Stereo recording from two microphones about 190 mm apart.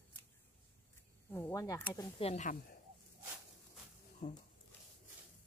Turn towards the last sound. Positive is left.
turn(degrees=40)  # may be behind; listen again after turning